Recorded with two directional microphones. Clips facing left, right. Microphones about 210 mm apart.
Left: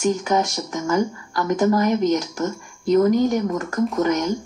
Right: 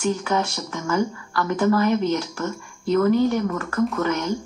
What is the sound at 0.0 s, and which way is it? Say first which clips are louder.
Speech: left 3 dB; 15° left (ahead or behind).